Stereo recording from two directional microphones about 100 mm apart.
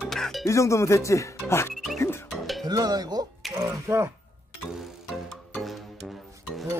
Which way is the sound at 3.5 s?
30° right (ahead or behind).